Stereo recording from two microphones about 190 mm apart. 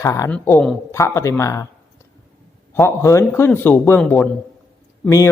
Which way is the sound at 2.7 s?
15° left (ahead or behind).